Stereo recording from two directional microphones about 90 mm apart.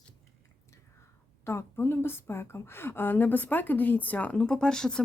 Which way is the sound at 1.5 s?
30° left (ahead or behind).